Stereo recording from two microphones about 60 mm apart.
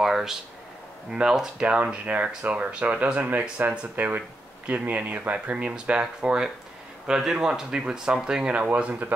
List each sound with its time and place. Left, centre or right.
0.0 s speech: centre